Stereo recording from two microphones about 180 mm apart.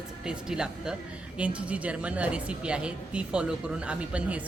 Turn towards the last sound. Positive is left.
turn(degrees=-5)  # may be behind; listen again after turning